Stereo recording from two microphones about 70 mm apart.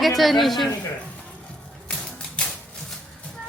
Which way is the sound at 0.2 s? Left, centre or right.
Centre.